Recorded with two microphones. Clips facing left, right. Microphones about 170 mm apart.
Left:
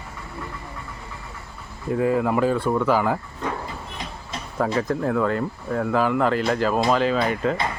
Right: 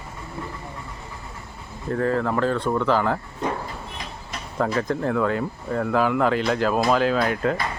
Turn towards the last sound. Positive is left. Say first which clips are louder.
# even
turn(degrees=0)  # may be behind; listen again after turning